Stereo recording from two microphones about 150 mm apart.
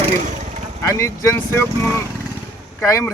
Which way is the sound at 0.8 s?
20° left (ahead or behind).